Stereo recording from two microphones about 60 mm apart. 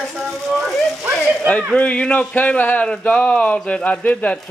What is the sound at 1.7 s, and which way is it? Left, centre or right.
Speech, left.